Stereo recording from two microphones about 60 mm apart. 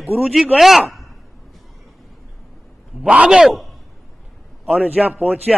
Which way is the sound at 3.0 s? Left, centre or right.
Right.